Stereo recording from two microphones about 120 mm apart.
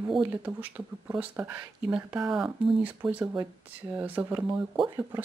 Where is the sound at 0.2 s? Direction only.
15° right (ahead or behind).